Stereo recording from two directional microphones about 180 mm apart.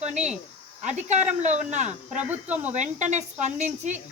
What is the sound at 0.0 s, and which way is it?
Speech, 40° right (ahead or behind).